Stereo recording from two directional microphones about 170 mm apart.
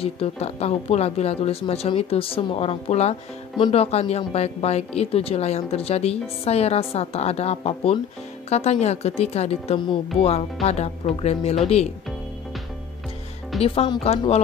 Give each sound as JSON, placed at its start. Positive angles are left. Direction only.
{"t": 0.0, "sound": "speech", "side_deg": 35}
{"t": 13.6, "sound": "speech", "side_deg": 35}